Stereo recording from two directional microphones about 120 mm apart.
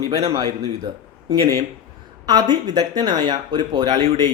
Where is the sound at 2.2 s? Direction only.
35° right (ahead or behind).